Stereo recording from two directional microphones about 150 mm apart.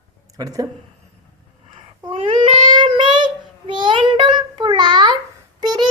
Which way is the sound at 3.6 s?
35° right (ahead or behind).